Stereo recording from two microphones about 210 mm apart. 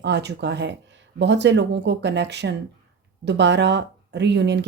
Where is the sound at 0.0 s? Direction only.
55° right (ahead or behind).